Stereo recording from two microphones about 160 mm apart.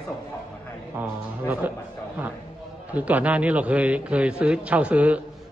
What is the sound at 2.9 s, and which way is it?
A man's voice, 10° right (ahead or behind).